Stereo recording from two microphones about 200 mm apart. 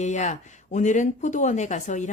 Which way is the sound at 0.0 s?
35° left (ahead or behind).